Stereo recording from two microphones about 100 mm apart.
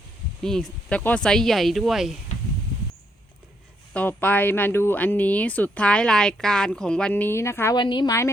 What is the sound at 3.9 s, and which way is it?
Speech, 15° left (ahead or behind).